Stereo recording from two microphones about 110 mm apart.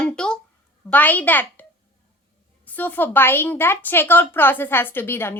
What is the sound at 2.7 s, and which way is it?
A woman's voice, 15° left (ahead or behind).